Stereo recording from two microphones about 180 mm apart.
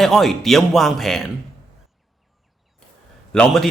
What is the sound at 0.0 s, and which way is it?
Speech, centre (ahead or behind).